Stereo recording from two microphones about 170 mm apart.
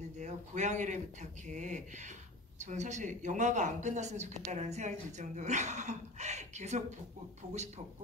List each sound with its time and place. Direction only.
0.2 s a woman's voice: 45° right (ahead or behind)